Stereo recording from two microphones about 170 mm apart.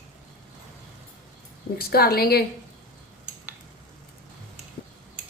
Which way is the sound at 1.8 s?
65° left (ahead or behind).